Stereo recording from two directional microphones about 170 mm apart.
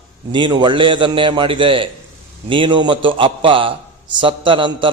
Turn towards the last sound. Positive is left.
turn(degrees=-30)  # may be behind; listen again after turning